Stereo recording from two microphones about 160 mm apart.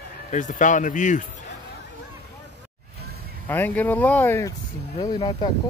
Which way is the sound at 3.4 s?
10° left (ahead or behind).